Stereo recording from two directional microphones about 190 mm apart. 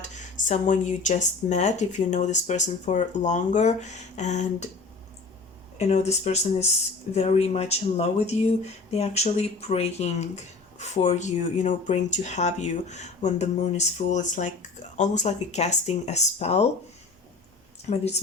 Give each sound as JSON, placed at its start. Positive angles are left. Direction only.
{"t": 0.0, "sound": "speech", "side_deg": 40}
{"t": 5.7, "sound": "speech", "side_deg": 35}
{"t": 17.8, "sound": "speech", "side_deg": 35}